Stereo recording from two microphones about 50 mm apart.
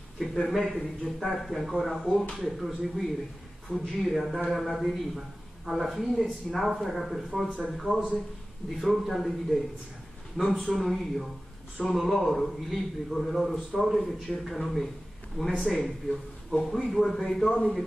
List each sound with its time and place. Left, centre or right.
0.2 s a man's voice: centre
10.3 s a man's voice: centre